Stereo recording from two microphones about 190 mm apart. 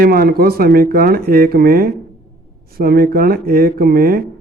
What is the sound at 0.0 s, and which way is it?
Speech, 55° right (ahead or behind).